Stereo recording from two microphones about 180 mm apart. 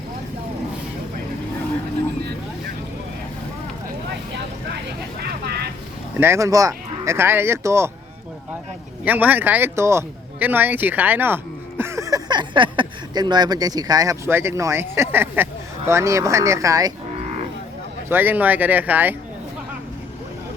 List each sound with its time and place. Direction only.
5.2 s vehicle: 65° right (ahead or behind)
6.1 s speech: 15° right (ahead or behind)
9.0 s speech: 10° right (ahead or behind)
18.1 s speech: 10° right (ahead or behind)